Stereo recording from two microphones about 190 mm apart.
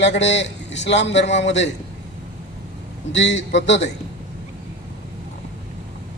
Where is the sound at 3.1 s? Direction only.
70° left (ahead or behind).